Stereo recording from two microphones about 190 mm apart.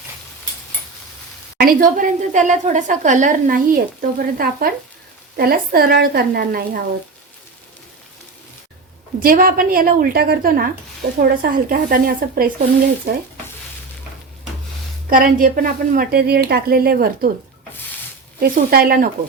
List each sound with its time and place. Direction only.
1.6 s a woman's voice: 45° right (ahead or behind)
9.2 s a woman's voice: 50° right (ahead or behind)
15.1 s a woman's voice: 45° right (ahead or behind)
18.3 s a woman's voice: 50° right (ahead or behind)